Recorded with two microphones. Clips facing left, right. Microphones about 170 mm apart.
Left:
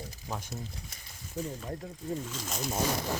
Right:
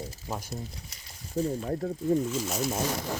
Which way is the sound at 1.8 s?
60° right (ahead or behind).